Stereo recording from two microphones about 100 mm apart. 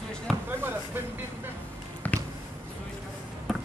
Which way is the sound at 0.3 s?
Centre (ahead or behind).